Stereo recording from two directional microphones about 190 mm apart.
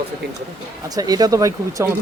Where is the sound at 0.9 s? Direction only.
20° right (ahead or behind).